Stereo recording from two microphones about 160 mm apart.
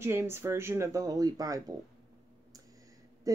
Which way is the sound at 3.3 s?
20° right (ahead or behind).